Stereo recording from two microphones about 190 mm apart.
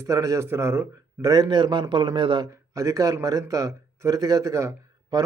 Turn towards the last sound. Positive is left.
turn(degrees=-15)  # may be behind; listen again after turning